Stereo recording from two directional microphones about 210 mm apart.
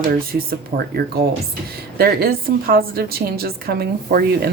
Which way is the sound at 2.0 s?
45° right (ahead or behind).